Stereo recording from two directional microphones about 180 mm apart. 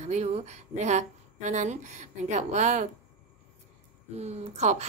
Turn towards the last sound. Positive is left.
turn(degrees=-40)  # may be behind; listen again after turning